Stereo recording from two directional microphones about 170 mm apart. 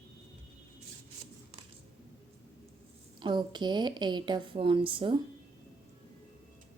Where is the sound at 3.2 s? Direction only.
25° right (ahead or behind).